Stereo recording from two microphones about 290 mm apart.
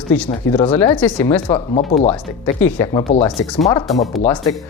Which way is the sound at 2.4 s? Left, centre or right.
Centre.